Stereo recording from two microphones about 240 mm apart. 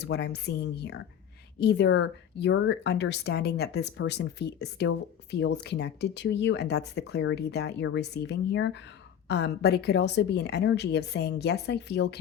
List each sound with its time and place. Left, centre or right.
0.0 s speech: left